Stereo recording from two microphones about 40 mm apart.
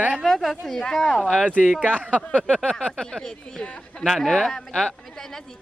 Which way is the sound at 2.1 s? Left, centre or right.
Left.